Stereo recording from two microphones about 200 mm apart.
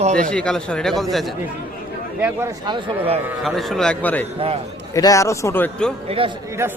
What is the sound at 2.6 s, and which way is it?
Speech, 25° right (ahead or behind).